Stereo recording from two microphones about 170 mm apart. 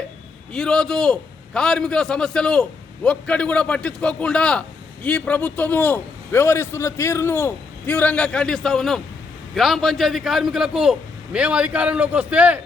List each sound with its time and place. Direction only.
0.5 s a man's voice: 5° left (ahead or behind)